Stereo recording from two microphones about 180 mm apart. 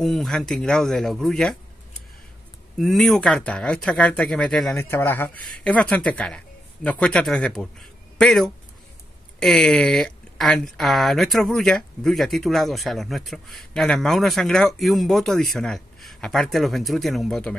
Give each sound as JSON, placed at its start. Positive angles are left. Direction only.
{"t": 0.0, "sound": "speech", "side_deg": 0}
{"t": 2.8, "sound": "speech", "side_deg": 0}